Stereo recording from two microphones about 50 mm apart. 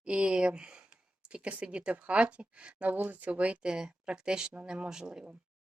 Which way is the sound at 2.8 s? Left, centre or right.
Right.